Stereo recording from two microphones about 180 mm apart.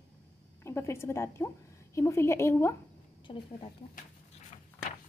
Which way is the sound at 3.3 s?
30° left (ahead or behind).